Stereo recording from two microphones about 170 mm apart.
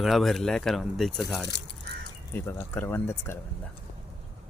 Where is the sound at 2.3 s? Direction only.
10° left (ahead or behind).